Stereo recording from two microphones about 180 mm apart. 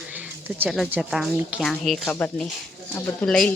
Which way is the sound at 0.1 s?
10° right (ahead or behind).